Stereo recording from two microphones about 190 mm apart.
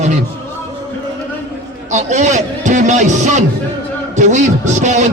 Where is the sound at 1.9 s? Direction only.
40° right (ahead or behind).